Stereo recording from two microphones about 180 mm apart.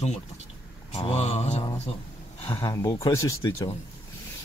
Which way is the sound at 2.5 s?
20° left (ahead or behind).